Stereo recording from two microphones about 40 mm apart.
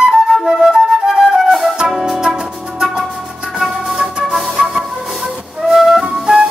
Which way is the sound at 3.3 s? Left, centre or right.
Centre.